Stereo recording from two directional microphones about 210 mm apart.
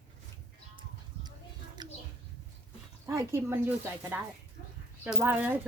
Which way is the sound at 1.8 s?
20° right (ahead or behind).